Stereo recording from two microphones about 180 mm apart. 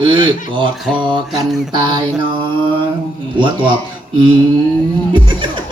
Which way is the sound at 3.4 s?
25° right (ahead or behind).